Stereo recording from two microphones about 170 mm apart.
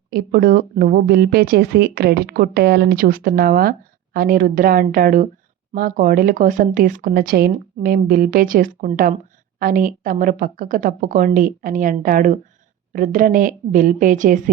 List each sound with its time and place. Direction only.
0.1 s speech: 60° right (ahead or behind)